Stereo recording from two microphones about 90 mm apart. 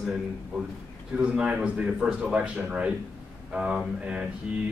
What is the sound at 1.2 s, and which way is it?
Speech, 10° right (ahead or behind).